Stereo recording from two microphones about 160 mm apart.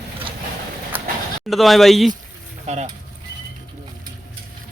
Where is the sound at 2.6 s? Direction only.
45° right (ahead or behind).